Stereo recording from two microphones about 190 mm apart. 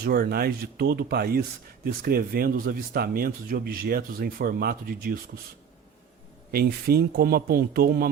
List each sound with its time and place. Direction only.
0.0 s speech: 55° right (ahead or behind)
6.5 s speech: 55° right (ahead or behind)